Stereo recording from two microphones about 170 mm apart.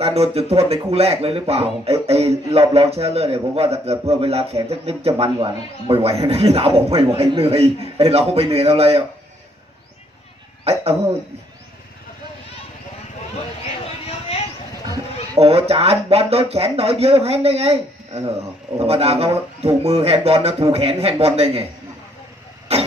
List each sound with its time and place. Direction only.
0.0 s a man's voice: 35° right (ahead or behind)
10.6 s a sound: 35° right (ahead or behind)
15.3 s a man's voice: 35° right (ahead or behind)